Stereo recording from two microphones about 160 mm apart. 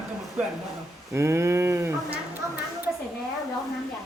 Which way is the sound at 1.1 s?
15° right (ahead or behind).